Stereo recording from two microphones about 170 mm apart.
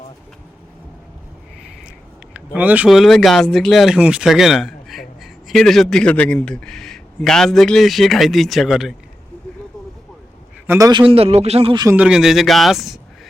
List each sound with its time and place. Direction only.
2.3 s speech: 10° right (ahead or behind)
10.7 s a man's voice: 20° right (ahead or behind)
11.0 s speech: 35° right (ahead or behind)
11.9 s speech: 5° right (ahead or behind)